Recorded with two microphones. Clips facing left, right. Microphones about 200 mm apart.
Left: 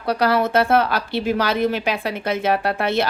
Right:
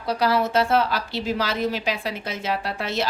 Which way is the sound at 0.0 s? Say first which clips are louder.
Left 3 dB; 60° left (ahead or behind).